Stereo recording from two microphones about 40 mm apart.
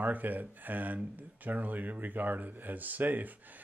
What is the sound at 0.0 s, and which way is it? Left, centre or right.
Speech, right.